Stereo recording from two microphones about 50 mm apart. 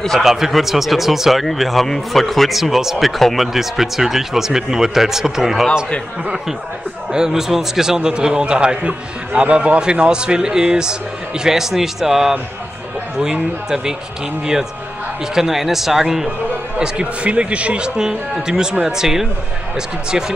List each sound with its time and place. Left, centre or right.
0.2 s a man's voice: centre
7.1 s a man's voice: centre
16.8 s a man's voice: right